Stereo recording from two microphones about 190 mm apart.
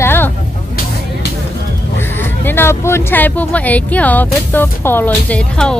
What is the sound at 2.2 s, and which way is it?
Speech, 10° left (ahead or behind).